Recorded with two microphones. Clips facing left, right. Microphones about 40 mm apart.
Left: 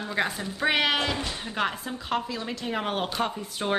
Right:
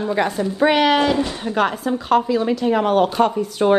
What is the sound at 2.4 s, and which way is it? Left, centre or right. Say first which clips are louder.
Speech: right 12 dB; centre.